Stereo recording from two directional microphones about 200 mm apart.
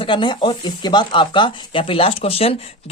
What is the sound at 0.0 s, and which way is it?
Speech, 25° left (ahead or behind).